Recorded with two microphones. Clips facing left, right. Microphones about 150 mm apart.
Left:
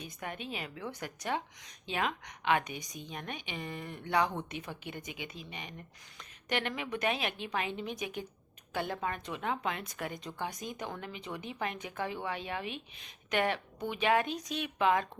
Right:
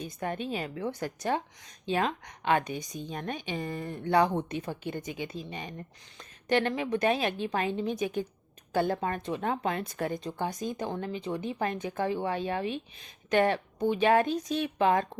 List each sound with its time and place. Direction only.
0.0 s a woman's voice: 35° right (ahead or behind)